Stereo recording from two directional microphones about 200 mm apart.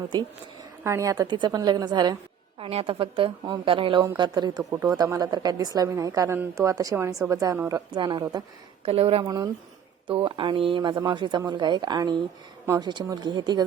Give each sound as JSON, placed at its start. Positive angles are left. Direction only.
{"t": 0.9, "sound": "a woman's voice", "side_deg": -15}